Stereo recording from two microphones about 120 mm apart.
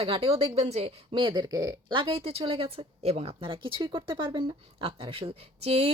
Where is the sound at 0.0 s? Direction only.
50° right (ahead or behind).